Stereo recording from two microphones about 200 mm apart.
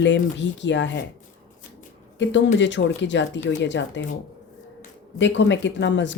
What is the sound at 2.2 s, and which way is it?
Speech, 65° left (ahead or behind).